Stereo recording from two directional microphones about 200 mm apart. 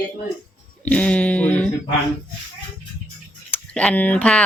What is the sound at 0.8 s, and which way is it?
Speech, 5° left (ahead or behind).